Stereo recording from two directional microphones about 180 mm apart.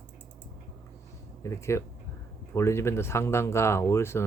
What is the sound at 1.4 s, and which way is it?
Speech, 15° left (ahead or behind).